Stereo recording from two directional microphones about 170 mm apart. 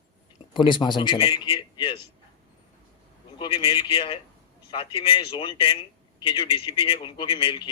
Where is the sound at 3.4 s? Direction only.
25° left (ahead or behind).